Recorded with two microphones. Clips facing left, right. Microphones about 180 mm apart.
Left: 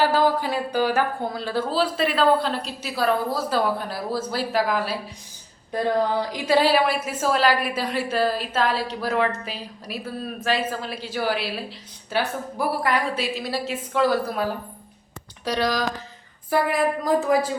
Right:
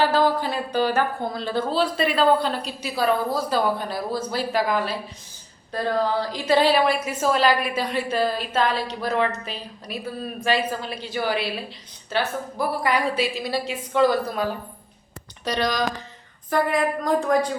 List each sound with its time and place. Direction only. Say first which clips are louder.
0.0 s speech: even; 10° left (ahead or behind)
5.7 s a sound: left 2 dB; 20° left (ahead or behind)
6.3 s speech: even; 10° left (ahead or behind)